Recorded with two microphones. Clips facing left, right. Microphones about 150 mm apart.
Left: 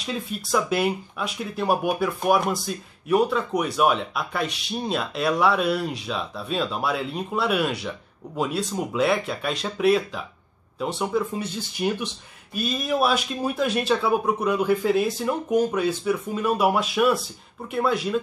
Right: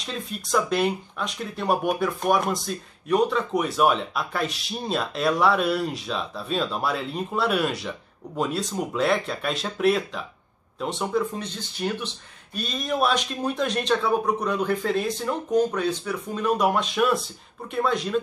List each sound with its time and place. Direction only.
0.0 s speech: 5° left (ahead or behind)